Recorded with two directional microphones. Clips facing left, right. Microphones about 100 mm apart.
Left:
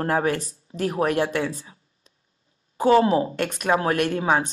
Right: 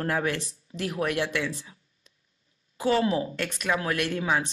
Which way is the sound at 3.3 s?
45° left (ahead or behind).